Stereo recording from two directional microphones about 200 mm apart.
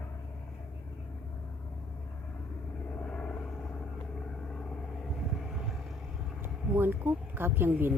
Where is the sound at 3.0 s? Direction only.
5° left (ahead or behind).